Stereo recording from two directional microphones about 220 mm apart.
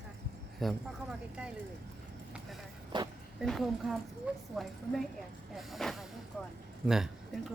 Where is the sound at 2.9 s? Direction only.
20° right (ahead or behind).